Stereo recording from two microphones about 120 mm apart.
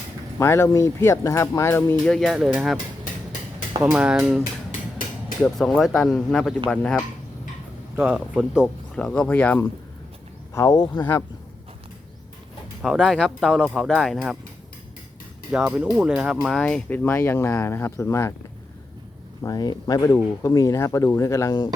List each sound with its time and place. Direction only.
0.3 s speech: 25° left (ahead or behind)
2.0 s speech: centre (ahead or behind)
3.9 s speech: 10° right (ahead or behind)
7.9 s speech: 15° right (ahead or behind)
8.6 s speech: 5° left (ahead or behind)
10.5 s speech: 30° left (ahead or behind)
12.8 s speech: centre (ahead or behind)
15.5 s speech: 10° right (ahead or behind)
16.6 s speech: 10° left (ahead or behind)
19.4 s speech: 30° left (ahead or behind)